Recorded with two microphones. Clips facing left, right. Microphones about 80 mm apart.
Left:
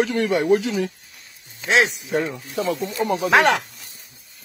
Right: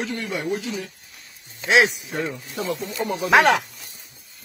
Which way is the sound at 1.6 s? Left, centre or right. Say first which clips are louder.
Right 1 dB; centre.